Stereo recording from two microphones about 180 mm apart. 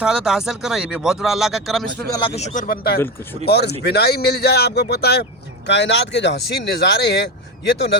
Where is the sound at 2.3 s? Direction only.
40° left (ahead or behind).